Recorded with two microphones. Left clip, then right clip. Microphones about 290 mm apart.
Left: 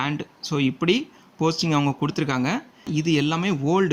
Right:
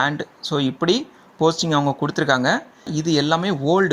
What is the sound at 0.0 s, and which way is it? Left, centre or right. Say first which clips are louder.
Speech: right 6 dB; centre.